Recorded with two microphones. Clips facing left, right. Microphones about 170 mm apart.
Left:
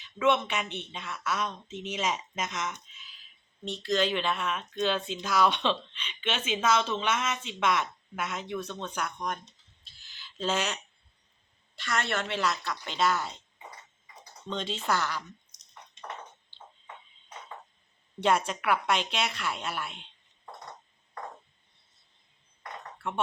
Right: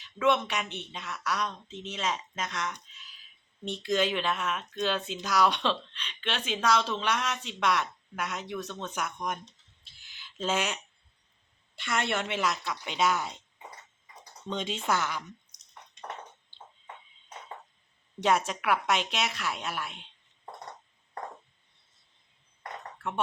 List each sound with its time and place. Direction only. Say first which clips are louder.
0.0 s speech: even; centre (ahead or behind)
3.8 s speech: even; 10° right (ahead or behind)
11.9 s a woman's voice: right 1 dB; 15° right (ahead or behind)
14.5 s a woman's voice: even; 10° right (ahead or behind)
18.2 s speech: even; 5° right (ahead or behind)